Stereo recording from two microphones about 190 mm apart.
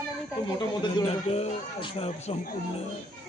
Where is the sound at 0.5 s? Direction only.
25° left (ahead or behind).